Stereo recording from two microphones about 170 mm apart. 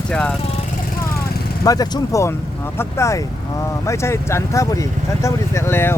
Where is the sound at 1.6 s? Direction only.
20° left (ahead or behind).